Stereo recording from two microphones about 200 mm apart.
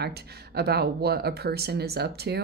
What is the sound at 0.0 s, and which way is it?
Speech, 55° right (ahead or behind).